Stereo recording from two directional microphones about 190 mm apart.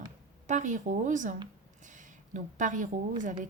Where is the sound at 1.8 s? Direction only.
40° right (ahead or behind).